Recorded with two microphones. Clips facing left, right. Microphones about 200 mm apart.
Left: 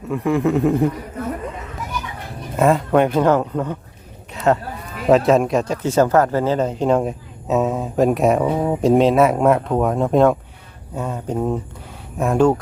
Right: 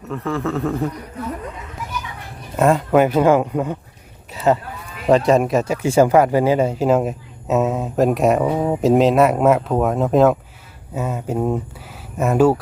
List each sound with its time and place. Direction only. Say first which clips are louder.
0.1 s a man's voice: left 5 dB; 15° left (ahead or behind)
2.6 s speech: right 1 dB; centre (ahead or behind)